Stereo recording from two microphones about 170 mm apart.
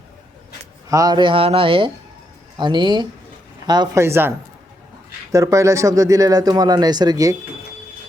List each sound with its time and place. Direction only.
0.9 s speech: 20° right (ahead or behind)